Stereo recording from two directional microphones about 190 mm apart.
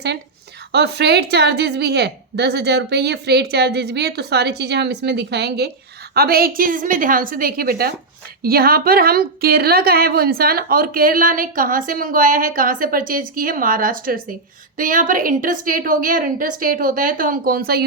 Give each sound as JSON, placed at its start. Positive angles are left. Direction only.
{"t": 0.7, "sound": "a woman's voice", "side_deg": -60}